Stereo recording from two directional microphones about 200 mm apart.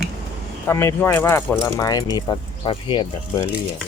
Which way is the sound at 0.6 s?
15° left (ahead or behind).